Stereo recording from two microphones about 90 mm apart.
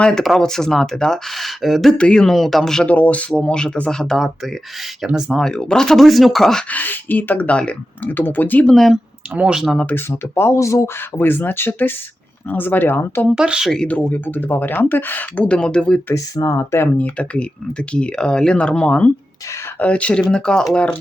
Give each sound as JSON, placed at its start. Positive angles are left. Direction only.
{"t": 0.0, "sound": "speech", "side_deg": 5}
{"t": 2.8, "sound": "speech", "side_deg": 15}
{"t": 5.5, "sound": "speech", "side_deg": 10}
{"t": 6.7, "sound": "speech", "side_deg": 20}
{"t": 8.6, "sound": "speech", "side_deg": 5}
{"t": 9.3, "sound": "speech", "side_deg": -15}
{"t": 9.9, "sound": "speech", "side_deg": 25}
{"t": 13.3, "sound": "speech", "side_deg": -10}
{"t": 13.7, "sound": "speech", "side_deg": 15}
{"t": 16.1, "sound": "speech", "side_deg": 40}
{"t": 17.0, "sound": "speech", "side_deg": 15}